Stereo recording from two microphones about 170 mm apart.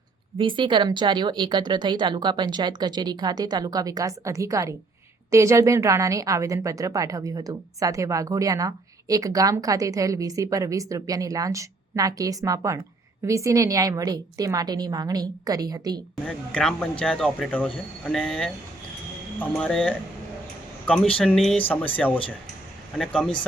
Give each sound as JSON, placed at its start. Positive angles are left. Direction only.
{"t": 0.3, "sound": "a woman's voice", "side_deg": -30}
{"t": 16.2, "sound": "speech", "side_deg": 5}